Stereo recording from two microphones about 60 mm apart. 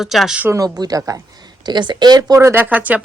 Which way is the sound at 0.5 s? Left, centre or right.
Right.